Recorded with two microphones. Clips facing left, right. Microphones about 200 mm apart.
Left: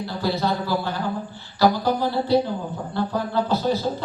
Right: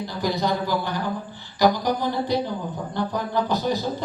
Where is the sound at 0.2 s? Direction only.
15° right (ahead or behind).